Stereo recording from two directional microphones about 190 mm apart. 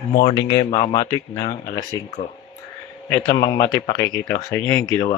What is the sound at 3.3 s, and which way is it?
Speech, 25° left (ahead or behind).